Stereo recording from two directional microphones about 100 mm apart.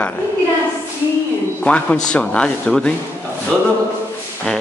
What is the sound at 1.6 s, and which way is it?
Speech, 10° left (ahead or behind).